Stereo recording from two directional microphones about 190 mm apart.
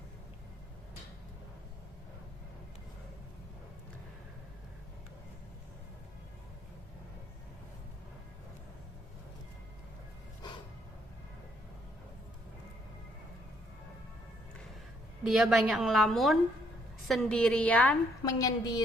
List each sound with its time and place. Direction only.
15.2 s a woman's voice: 5° right (ahead or behind)
18.2 s a woman's voice: 20° left (ahead or behind)